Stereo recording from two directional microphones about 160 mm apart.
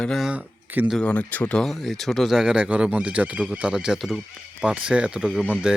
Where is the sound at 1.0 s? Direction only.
10° left (ahead or behind).